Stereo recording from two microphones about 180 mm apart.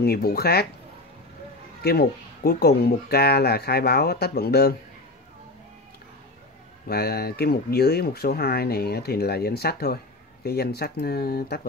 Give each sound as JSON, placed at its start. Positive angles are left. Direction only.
{"t": 0.0, "sound": "speech", "side_deg": 60}
{"t": 1.8, "sound": "speech", "side_deg": 60}
{"t": 6.9, "sound": "speech", "side_deg": 60}